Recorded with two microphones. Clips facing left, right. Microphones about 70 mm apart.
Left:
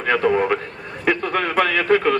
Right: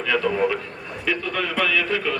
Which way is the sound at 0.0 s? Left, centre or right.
Left.